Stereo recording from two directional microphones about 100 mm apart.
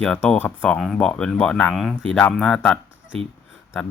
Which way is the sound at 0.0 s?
10° left (ahead or behind).